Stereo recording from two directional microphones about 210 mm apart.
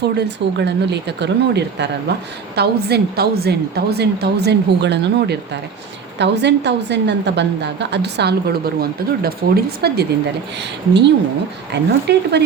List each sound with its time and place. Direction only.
0.0 s a woman's voice: 55° right (ahead or behind)